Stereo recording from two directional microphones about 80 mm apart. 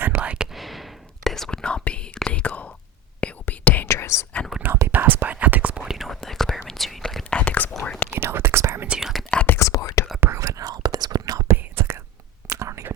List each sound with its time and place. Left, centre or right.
0.2 s whispering: centre
0.5 s whispering: centre
3.8 s whispering: left
4.9 s whispering: right; by 7.3 s centre
7.3 s whispering: centre
8.1 s whispering: right
8.9 s whispering: centre
9.3 s whispering: centre
9.6 s whispering: left
10.2 s whispering: right
11.4 s whispering: right